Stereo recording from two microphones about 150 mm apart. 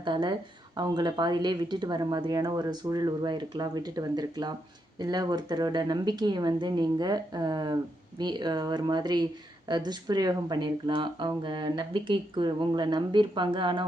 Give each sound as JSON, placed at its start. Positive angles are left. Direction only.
{"t": 0.0, "sound": "speech", "side_deg": -30}